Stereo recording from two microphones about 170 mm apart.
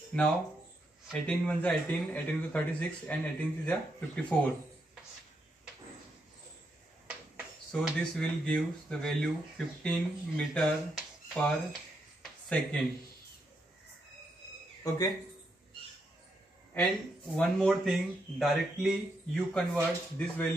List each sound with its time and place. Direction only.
0.1 s a man's voice: 5° left (ahead or behind)
7.7 s speech: 5° left (ahead or behind)
14.8 s speech: 20° left (ahead or behind)
17.4 s a man's voice: 5° left (ahead or behind)